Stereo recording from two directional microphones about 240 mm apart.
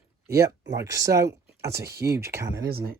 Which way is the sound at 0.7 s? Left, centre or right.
Centre.